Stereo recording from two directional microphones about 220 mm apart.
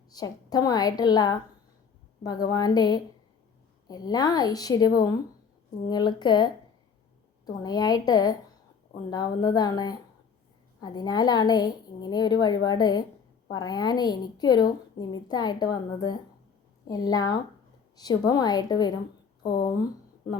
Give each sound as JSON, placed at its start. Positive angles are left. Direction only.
{"t": 0.1, "sound": "a woman's voice", "side_deg": 15}